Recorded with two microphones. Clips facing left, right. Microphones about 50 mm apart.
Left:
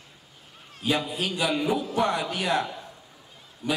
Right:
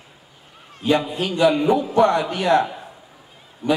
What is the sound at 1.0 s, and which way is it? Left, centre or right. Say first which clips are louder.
Speech: right 5 dB; right.